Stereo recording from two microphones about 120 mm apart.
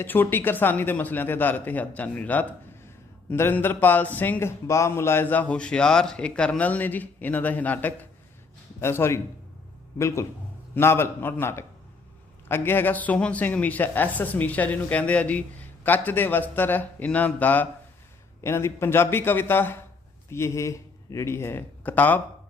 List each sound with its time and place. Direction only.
0.0 s a man's voice: 15° left (ahead or behind)